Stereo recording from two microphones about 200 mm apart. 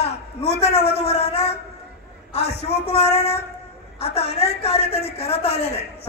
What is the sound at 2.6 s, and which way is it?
A woman's voice, 30° left (ahead or behind).